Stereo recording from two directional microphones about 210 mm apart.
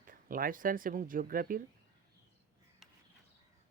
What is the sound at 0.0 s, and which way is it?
Speech, 40° right (ahead or behind).